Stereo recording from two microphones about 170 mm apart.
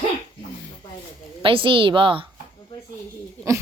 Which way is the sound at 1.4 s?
30° right (ahead or behind).